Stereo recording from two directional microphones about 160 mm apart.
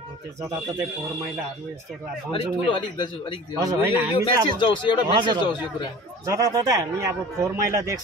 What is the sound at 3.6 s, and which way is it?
Speech, 20° right (ahead or behind).